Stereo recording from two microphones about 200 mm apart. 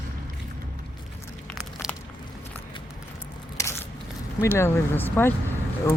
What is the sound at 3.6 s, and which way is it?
Scissors, 15° left (ahead or behind).